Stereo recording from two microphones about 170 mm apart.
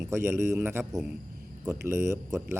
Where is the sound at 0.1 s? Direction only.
15° right (ahead or behind).